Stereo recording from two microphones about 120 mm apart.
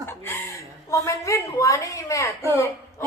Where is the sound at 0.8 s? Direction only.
25° left (ahead or behind).